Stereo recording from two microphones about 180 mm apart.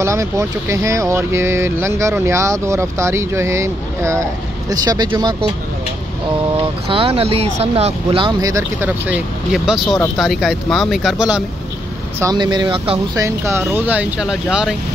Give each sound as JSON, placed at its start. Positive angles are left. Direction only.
{"t": 0.0, "sound": "speech", "side_deg": -15}
{"t": 6.9, "sound": "speech", "side_deg": -30}
{"t": 12.2, "sound": "speech", "side_deg": -20}
{"t": 13.1, "sound": "speech", "side_deg": -15}